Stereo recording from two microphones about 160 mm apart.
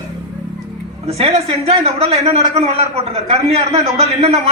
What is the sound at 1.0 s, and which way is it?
A man's voice, 40° right (ahead or behind).